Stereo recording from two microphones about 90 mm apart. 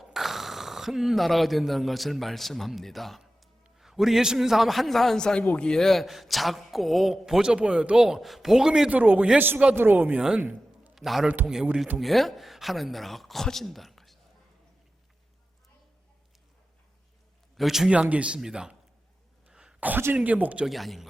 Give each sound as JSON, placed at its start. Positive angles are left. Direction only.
{"t": 0.0, "sound": "a man's voice", "side_deg": 0}
{"t": 10.9, "sound": "a man's voice", "side_deg": -5}
{"t": 11.9, "sound": "a man's voice", "side_deg": 0}
{"t": 17.6, "sound": "a man's voice", "side_deg": -5}
{"t": 17.9, "sound": "speech", "side_deg": -15}
{"t": 19.5, "sound": "a sound", "side_deg": -10}
{"t": 20.1, "sound": "speech", "side_deg": -15}
{"t": 20.7, "sound": "a man's voice", "side_deg": 0}